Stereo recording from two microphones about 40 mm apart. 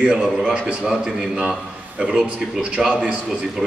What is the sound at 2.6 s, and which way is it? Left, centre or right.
Speech, right.